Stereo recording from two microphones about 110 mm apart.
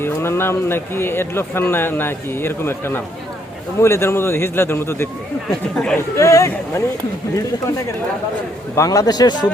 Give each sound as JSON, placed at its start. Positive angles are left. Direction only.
{"t": 0.0, "sound": "speech", "side_deg": 20}
{"t": 5.5, "sound": "speech", "side_deg": 5}
{"t": 6.1, "sound": "speech", "side_deg": 30}
{"t": 8.7, "sound": "speech", "side_deg": 30}